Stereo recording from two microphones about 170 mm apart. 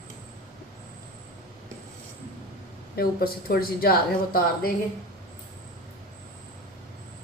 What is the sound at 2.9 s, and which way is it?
A woman's voice, 60° left (ahead or behind).